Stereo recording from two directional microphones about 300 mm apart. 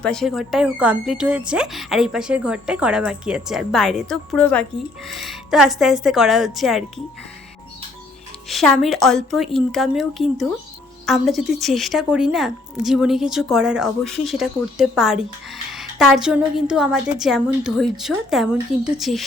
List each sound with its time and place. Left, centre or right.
0.0 s speech: centre
8.4 s speech: centre